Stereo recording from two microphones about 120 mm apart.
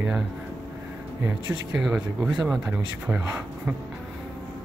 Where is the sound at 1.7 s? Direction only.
5° right (ahead or behind).